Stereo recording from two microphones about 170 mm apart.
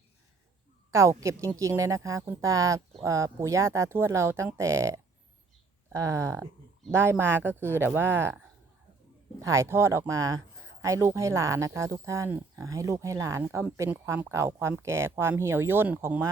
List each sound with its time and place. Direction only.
0.9 s a sound: 15° right (ahead or behind)
1.2 s speech: 15° right (ahead or behind)
9.4 s speech: 20° right (ahead or behind)